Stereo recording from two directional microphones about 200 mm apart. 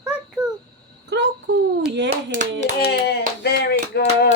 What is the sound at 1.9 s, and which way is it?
Speech, 60° right (ahead or behind).